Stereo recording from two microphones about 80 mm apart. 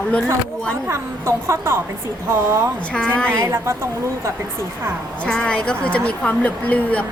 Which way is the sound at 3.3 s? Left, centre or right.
Right.